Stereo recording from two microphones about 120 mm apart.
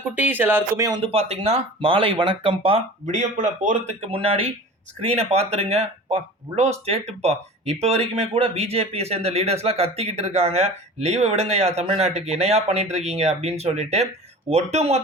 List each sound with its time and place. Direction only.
0.2 s speech: 15° right (ahead or behind)
1.0 s speech: 60° right (ahead or behind)
3.2 s speech: 85° right; by 15.0 s 65° right (ahead or behind)